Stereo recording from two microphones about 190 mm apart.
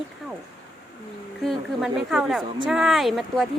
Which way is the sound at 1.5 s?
Centre (ahead or behind).